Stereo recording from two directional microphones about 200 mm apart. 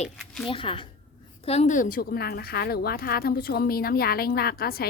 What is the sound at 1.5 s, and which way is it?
A woman's voice, 35° left (ahead or behind).